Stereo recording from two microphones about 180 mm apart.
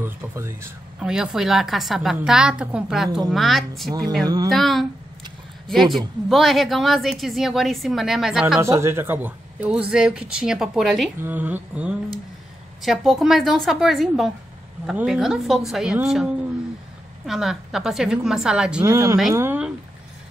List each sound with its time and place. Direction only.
0.0 s a woman's voice: 15° right (ahead or behind)
4.2 s speech: 20° right (ahead or behind)
4.5 s a woman's voice: centre (ahead or behind)
8.5 s a woman's voice: 15° right (ahead or behind)
11.1 s mantra: 10° right (ahead or behind)
12.8 s a woman's voice: centre (ahead or behind)
17.3 s a woman's voice: 5° right (ahead or behind)
18.9 s speech: 20° right (ahead or behind)